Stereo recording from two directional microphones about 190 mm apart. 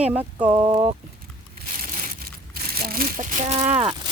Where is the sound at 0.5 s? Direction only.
20° right (ahead or behind).